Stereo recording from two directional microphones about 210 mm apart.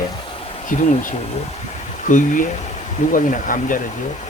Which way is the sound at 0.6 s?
40° left (ahead or behind).